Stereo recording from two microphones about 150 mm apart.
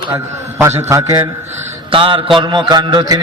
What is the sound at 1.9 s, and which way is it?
A man's voice, 35° right (ahead or behind).